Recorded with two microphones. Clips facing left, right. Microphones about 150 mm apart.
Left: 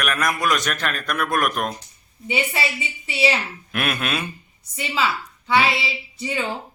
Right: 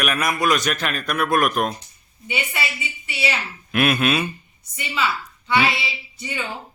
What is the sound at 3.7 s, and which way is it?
Speech, 5° right (ahead or behind).